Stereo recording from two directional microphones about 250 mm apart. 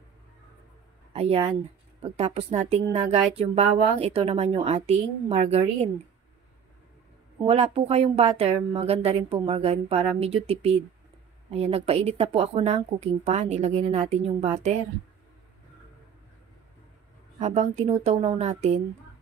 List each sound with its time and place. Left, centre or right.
1.1 s speech: right
7.3 s speech: right
17.4 s speech: right